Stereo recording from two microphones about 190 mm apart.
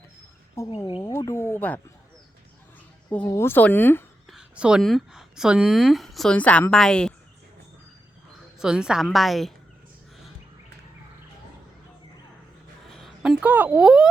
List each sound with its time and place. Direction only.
0.9 s speech: 25° left (ahead or behind)
1.1 s speech: 15° left (ahead or behind)
3.1 s speech: 10° left (ahead or behind)
4.3 s speech: 5° right (ahead or behind)
8.5 s a woman's voice: 5° right (ahead or behind)
12.9 s a sound: centre (ahead or behind)